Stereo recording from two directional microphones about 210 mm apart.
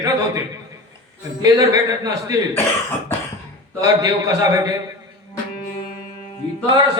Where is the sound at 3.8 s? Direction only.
15° right (ahead or behind).